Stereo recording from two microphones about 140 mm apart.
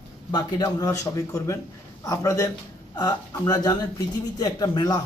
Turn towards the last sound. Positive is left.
turn(degrees=30)  # may be behind; listen again after turning